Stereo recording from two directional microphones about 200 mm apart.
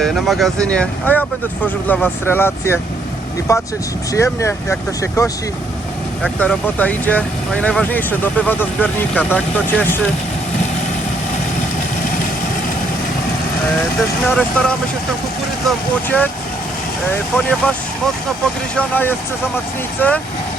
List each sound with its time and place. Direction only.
0.0 s speech: centre (ahead or behind)
6.4 s speech: 5° left (ahead or behind)
14.3 s speech: 5° left (ahead or behind)
16.0 s speech: 10° left (ahead or behind)
17.3 s speech: 5° left (ahead or behind)